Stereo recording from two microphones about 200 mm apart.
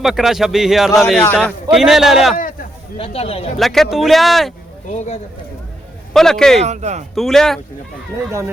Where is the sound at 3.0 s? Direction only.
30° left (ahead or behind).